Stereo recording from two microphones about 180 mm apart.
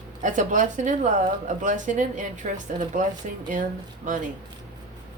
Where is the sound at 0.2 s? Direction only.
45° right (ahead or behind).